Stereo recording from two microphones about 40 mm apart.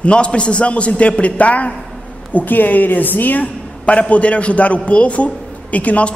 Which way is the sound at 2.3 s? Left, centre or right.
Left.